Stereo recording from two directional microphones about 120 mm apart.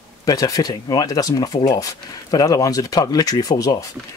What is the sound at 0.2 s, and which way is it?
Speech, 30° left (ahead or behind).